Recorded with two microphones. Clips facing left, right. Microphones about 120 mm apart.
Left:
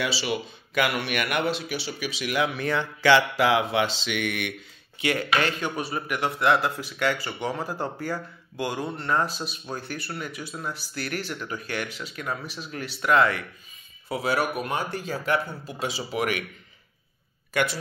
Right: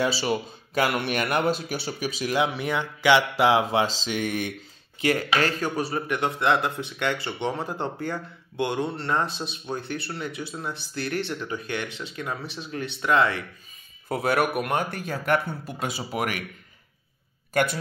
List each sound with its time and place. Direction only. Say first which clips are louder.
0.0 s speech: right 3 dB; 40° right (ahead or behind)
2.3 s speech: right 1 dB; 25° right (ahead or behind)
2.6 s speech: left 1 dB; 15° right (ahead or behind)
14.0 s speech: right 2 dB; 50° right (ahead or behind)
17.5 s speech: right 2 dB; 45° right (ahead or behind)